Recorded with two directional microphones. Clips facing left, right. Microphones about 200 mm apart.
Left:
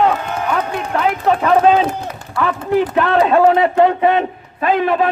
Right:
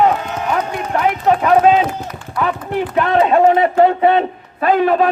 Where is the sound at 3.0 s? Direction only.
15° right (ahead or behind).